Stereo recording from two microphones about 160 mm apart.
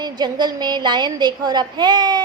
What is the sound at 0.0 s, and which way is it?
A woman's voice, 25° right (ahead or behind).